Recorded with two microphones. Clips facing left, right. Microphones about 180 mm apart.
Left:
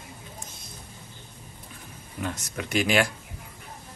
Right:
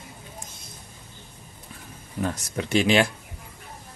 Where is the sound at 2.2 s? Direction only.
35° right (ahead or behind).